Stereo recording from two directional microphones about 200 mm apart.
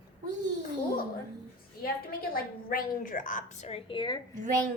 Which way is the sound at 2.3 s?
45° left (ahead or behind).